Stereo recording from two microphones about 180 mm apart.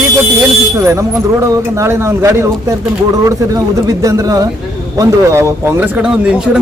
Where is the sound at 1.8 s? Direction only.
15° right (ahead or behind).